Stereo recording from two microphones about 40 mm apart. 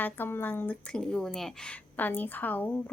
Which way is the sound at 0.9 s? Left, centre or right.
Centre.